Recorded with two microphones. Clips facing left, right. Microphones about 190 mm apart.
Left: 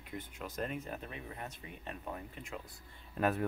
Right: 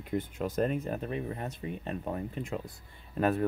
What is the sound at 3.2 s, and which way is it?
Speech, 5° left (ahead or behind).